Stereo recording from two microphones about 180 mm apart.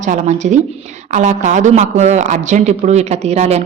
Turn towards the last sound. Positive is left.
turn(degrees=-35)  # may be behind; listen again after turning